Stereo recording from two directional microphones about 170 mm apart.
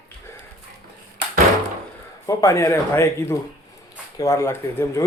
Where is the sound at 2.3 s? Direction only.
20° left (ahead or behind).